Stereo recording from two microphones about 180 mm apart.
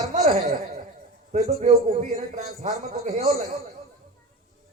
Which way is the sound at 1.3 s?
45° right (ahead or behind).